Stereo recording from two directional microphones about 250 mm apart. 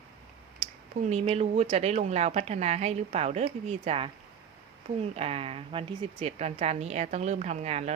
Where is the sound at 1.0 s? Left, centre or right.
Right.